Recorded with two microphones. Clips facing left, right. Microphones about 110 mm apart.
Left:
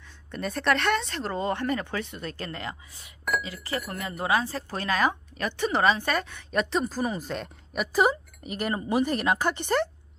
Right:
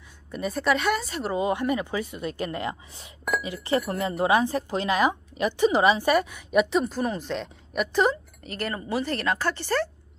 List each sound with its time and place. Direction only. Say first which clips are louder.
0.3 s speech: right 1 dB; 5° right (ahead or behind)
2.3 s a woman's voice: right 6 dB; 20° right (ahead or behind); by 9.8 s 20° left (ahead or behind)